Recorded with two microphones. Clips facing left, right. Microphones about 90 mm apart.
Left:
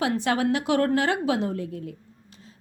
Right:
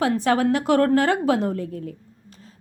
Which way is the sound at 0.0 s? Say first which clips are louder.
Right 4 dB; 40° right (ahead or behind).